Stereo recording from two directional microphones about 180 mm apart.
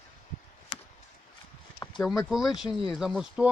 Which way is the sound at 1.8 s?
20° left (ahead or behind).